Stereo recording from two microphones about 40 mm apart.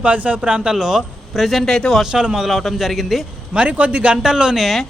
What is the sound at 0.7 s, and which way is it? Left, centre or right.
Speech, centre.